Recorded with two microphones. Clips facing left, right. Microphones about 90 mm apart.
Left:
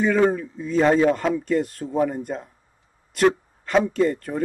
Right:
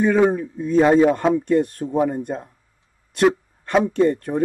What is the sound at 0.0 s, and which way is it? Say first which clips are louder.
Speech: right 2 dB; 15° right (ahead or behind).